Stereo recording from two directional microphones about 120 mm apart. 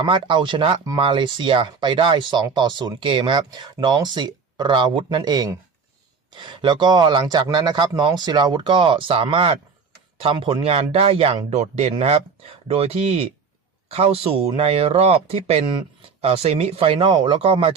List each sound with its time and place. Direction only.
0.0 s speech: 40° right (ahead or behind)